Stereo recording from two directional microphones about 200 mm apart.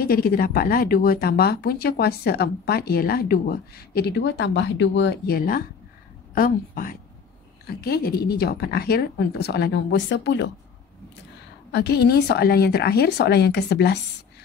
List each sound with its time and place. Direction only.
0.0 s speech: 45° left (ahead or behind); by 10.5 s 65° left (ahead or behind)
11.7 s speech: 55° left (ahead or behind)